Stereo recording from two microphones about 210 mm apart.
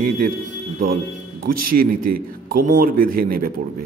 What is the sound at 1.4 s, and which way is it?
A man's voice, 40° right (ahead or behind).